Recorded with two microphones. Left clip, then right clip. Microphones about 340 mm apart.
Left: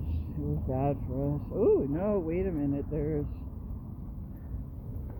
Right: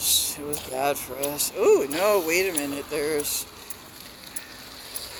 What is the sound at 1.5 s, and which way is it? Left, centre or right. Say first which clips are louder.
Speech: right 6 dB; centre.